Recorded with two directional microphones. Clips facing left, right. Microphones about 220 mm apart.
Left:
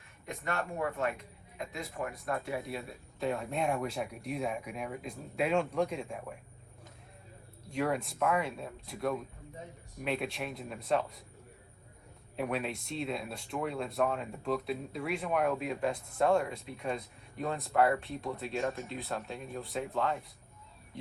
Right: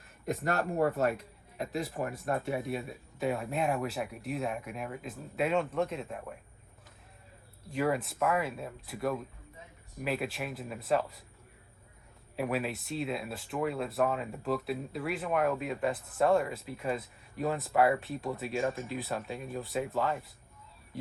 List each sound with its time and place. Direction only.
0.8 s speech: 35° right (ahead or behind)
1.0 s speech: centre (ahead or behind)
7.7 s speech: centre (ahead or behind)
12.4 s speech: centre (ahead or behind)
20.9 s a sound: 5° right (ahead or behind)